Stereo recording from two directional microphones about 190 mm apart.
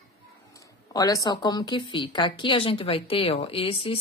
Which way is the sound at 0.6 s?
20° left (ahead or behind).